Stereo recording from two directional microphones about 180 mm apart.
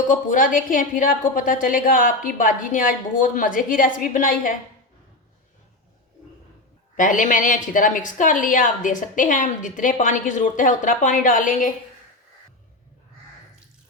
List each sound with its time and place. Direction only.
0.1 s a woman's voice: 45° left (ahead or behind)
6.9 s a woman's voice: 45° left (ahead or behind)